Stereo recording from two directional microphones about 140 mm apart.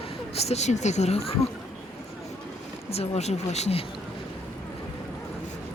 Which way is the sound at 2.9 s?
50° left (ahead or behind).